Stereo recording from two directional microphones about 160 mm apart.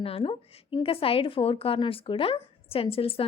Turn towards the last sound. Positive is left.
turn(degrees=35)  # may be behind; listen again after turning